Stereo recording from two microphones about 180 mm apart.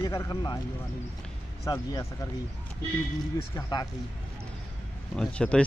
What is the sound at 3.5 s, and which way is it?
Speech, 20° left (ahead or behind).